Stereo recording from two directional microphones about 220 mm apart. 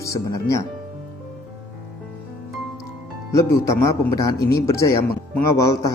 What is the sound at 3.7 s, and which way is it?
A man's voice, 15° left (ahead or behind).